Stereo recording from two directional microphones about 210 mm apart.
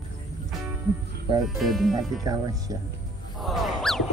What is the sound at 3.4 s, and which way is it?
Music, centre (ahead or behind).